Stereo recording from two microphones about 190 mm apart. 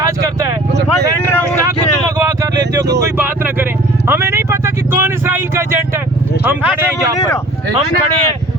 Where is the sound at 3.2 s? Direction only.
10° right (ahead or behind).